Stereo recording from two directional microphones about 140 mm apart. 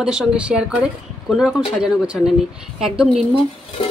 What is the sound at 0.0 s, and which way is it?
Speech, 5° right (ahead or behind).